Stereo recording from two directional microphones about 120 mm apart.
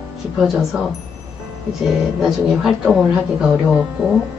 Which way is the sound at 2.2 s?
Centre (ahead or behind).